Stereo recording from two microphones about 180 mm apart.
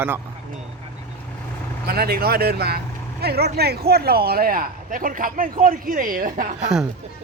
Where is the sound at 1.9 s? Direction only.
55° right (ahead or behind).